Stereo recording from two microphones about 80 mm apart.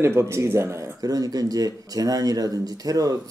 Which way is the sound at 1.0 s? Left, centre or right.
Right.